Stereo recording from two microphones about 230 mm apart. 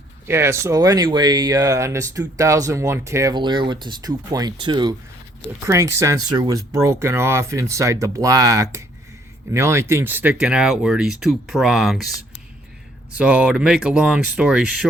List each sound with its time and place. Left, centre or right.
0.3 s speech: centre
13.1 s speech: centre